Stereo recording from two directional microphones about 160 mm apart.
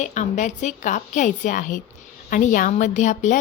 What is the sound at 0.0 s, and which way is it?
A woman's voice, 50° left (ahead or behind).